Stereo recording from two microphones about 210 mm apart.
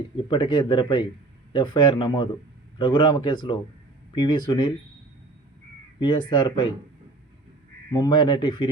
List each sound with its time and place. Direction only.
0.3 s speech: 20° left (ahead or behind)
6.0 s speech: 20° left (ahead or behind)
7.9 s speech: 20° left (ahead or behind)